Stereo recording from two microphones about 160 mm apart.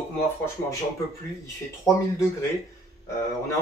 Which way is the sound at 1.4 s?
20° left (ahead or behind).